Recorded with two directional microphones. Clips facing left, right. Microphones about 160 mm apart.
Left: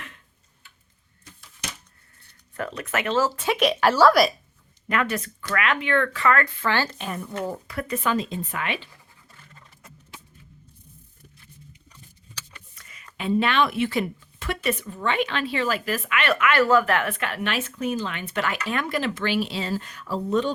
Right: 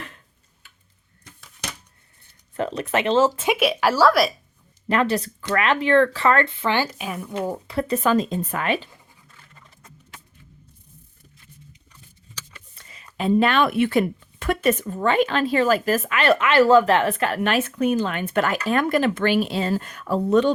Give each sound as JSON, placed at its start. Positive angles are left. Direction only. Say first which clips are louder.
{"t": 2.6, "sound": "speech", "louder": "right 5 dB", "side_deg": -25}
{"t": 3.6, "sound": "a woman's voice", "louder": "left 1 dB", "side_deg": -5}
{"t": 4.9, "sound": "speech", "louder": "right 5 dB", "side_deg": -30}
{"t": 7.7, "sound": "speech", "louder": "right 7 dB", "side_deg": -30}
{"t": 12.7, "sound": "a sound", "louder": "right 2 dB", "side_deg": -30}
{"t": 13.1, "sound": "speech", "louder": "right 3 dB", "side_deg": -40}